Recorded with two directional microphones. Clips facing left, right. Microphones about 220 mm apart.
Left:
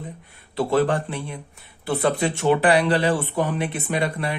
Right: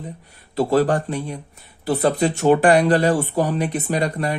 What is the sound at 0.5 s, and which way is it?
Speech, 40° right (ahead or behind).